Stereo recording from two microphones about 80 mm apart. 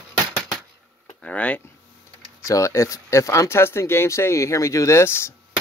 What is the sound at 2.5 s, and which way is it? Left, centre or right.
Speech, left.